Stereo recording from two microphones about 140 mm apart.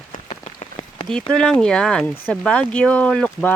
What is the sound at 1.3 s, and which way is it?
Speech, 5° left (ahead or behind).